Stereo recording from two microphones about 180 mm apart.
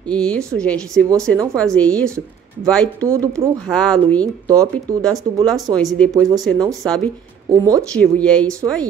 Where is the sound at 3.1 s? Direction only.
15° right (ahead or behind).